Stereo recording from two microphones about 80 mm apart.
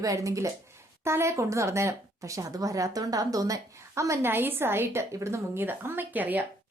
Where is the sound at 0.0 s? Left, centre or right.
Right.